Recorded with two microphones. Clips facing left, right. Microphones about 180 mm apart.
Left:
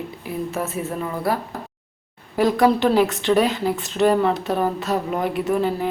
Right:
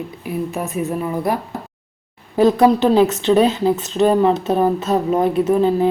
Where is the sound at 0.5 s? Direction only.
15° right (ahead or behind).